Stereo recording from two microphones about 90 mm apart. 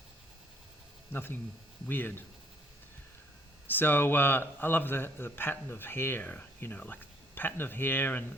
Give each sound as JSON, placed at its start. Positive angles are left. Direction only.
{"t": 1.1, "sound": "a man's voice", "side_deg": 25}
{"t": 3.7, "sound": "a man's voice", "side_deg": 20}